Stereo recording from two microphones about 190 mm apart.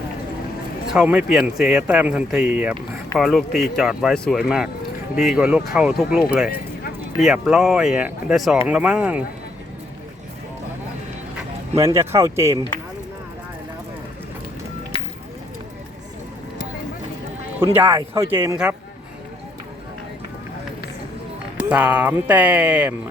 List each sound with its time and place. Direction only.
0.9 s speech: 5° right (ahead or behind)
11.7 s speech: 15° right (ahead or behind)
14.9 s a sound: 30° left (ahead or behind)
17.6 s speech: 15° right (ahead or behind)
21.6 s speech: 5° right (ahead or behind)